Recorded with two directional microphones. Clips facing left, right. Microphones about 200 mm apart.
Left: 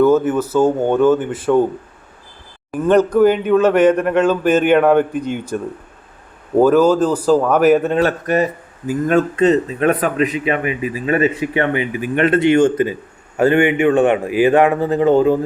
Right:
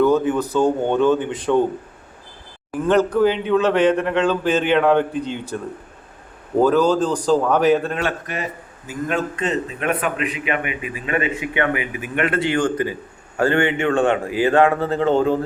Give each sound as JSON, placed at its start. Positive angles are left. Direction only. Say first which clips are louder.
{"t": 0.0, "sound": "speech", "louder": "left 3 dB", "side_deg": 5}
{"t": 2.7, "sound": "speech", "louder": "left 4 dB", "side_deg": 15}
{"t": 6.6, "sound": "speech", "louder": "left 4 dB", "side_deg": 10}
{"t": 7.9, "sound": "a man's voice", "louder": "left 9 dB", "side_deg": 40}